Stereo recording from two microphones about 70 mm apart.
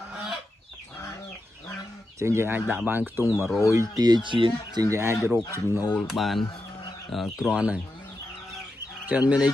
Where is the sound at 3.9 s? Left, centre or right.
Right.